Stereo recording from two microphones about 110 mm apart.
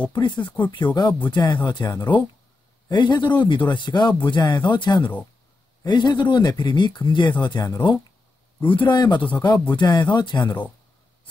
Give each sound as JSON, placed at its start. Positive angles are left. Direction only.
{"t": 0.1, "sound": "speech", "side_deg": 45}